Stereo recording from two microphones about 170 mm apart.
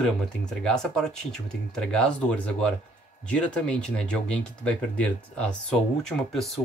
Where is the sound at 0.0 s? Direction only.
5° left (ahead or behind).